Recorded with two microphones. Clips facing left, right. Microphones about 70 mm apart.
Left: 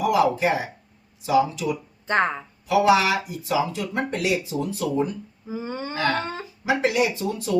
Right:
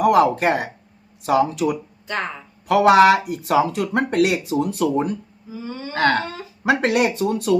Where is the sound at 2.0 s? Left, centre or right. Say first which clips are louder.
Left 5 dB; left.